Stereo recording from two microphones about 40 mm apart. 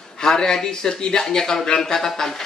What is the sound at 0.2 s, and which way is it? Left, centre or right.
Speech, centre.